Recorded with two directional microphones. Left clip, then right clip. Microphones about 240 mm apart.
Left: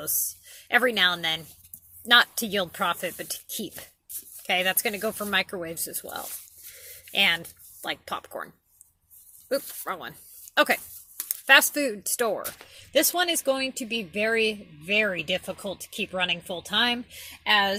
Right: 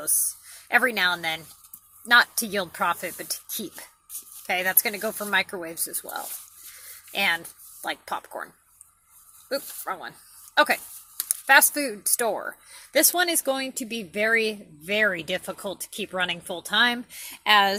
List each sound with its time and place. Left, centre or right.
0.5 s speech: centre
9.5 s speech: centre
11.3 s speech: centre